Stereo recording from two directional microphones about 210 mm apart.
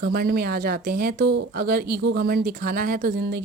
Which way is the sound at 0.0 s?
50° right (ahead or behind).